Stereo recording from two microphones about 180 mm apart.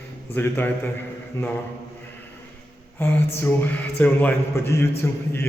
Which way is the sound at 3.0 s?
10° left (ahead or behind).